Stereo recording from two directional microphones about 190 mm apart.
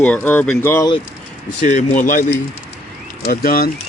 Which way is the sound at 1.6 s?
40° left (ahead or behind).